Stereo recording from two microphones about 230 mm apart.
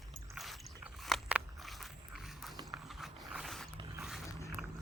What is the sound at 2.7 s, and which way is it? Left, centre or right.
Mechanisms, centre.